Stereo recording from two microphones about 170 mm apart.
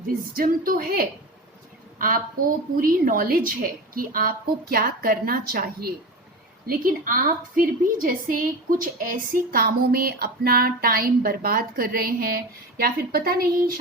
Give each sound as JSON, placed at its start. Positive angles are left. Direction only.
{"t": 0.3, "sound": "a woman's voice", "side_deg": -55}